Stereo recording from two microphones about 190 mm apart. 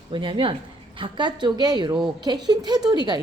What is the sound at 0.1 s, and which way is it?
A woman's voice, 25° right (ahead or behind).